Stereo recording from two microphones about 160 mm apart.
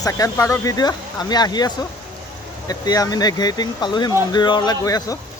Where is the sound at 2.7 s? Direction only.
25° left (ahead or behind).